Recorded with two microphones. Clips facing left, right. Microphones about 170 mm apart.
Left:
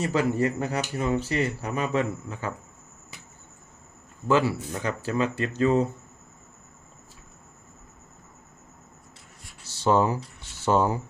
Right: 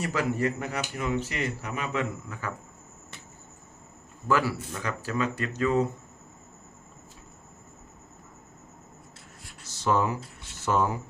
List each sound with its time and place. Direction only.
0.0 s speech: 25° left (ahead or behind)
4.3 s speech: 25° left (ahead or behind)
9.6 s a sound: 30° left (ahead or behind)
10.7 s speech: 30° left (ahead or behind)